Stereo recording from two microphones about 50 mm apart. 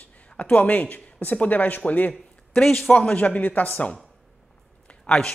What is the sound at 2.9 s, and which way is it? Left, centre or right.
Speech, left.